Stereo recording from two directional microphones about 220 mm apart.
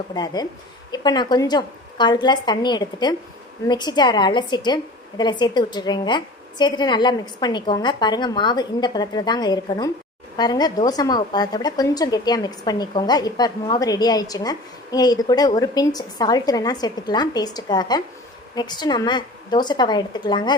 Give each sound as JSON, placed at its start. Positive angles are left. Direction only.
{"t": 0.1, "sound": "a woman's voice", "side_deg": 20}